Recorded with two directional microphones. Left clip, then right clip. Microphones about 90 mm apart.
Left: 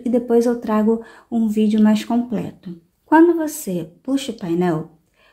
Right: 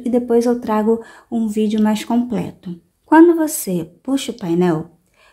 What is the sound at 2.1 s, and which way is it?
A woman's voice, 30° right (ahead or behind).